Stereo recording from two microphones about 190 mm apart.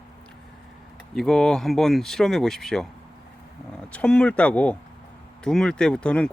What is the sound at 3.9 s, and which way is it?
Speech, 5° left (ahead or behind).